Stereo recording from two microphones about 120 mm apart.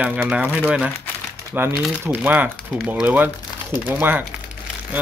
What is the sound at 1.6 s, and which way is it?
Speech, 15° right (ahead or behind).